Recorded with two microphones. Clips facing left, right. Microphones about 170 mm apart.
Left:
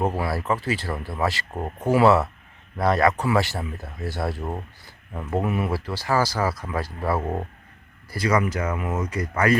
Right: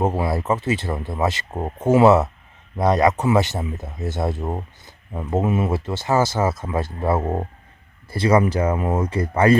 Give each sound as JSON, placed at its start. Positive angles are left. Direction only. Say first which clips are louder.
{"t": 0.0, "sound": "speech", "louder": "right 3 dB", "side_deg": -20}